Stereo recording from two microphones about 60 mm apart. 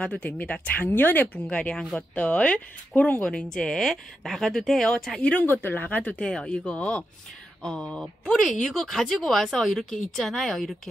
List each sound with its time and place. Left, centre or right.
0.0 s speech: centre
5.3 s speech: left
6.2 s speech: centre